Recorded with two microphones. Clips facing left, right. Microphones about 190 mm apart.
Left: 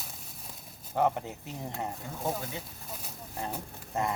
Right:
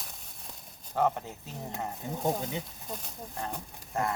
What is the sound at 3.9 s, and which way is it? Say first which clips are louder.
Speech: even; 20° left (ahead or behind).